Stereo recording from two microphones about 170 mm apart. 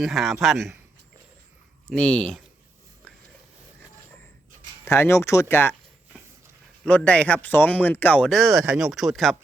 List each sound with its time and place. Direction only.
0.0 s speech: centre (ahead or behind)
1.9 s speech: 5° left (ahead or behind)
4.9 s speech: 15° left (ahead or behind)
6.8 s speech: 10° left (ahead or behind)